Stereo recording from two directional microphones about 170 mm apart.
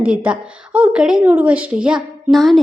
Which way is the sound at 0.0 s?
5° right (ahead or behind).